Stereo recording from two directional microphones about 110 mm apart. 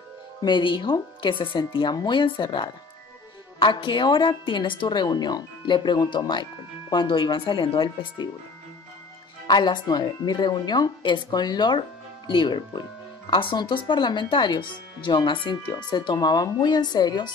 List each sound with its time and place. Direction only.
0.4 s speech: 45° left (ahead or behind)
9.5 s speech: 40° left (ahead or behind)